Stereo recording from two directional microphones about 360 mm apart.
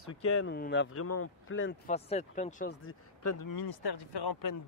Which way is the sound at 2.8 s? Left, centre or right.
Left.